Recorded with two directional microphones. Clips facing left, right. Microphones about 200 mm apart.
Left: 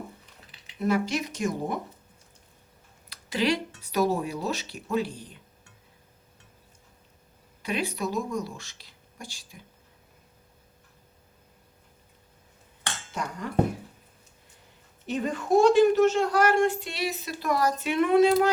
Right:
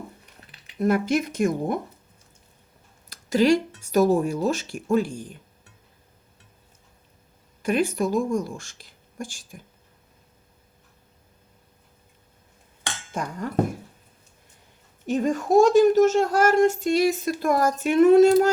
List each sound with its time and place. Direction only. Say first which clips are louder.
0.8 s speech: right 4 dB; 50° right (ahead or behind)
3.1 s speech: right 7 dB; 45° right (ahead or behind)
7.6 s speech: right 7 dB; 50° right (ahead or behind)
13.2 s speech: right 3 dB; 50° right (ahead or behind)
15.0 s speech: right 6 dB; 45° right (ahead or behind)